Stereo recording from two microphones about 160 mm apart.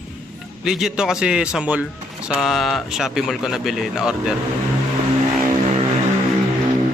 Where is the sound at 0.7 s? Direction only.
5° right (ahead or behind).